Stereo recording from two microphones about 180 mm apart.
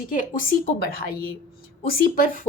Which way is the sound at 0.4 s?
55° left (ahead or behind).